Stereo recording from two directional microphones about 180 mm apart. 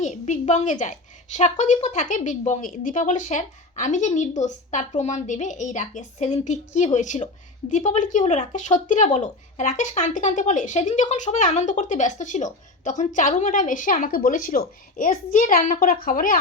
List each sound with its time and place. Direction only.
0.0 s a woman's voice: 40° left (ahead or behind)